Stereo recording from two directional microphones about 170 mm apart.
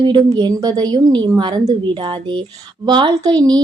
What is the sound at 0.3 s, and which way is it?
Speech, 25° right (ahead or behind).